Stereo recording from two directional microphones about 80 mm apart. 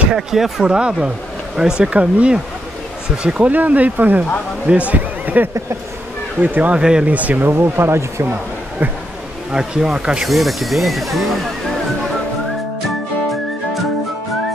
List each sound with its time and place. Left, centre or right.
0.1 s speech: centre; by 8.3 s right
9.5 s speech: centre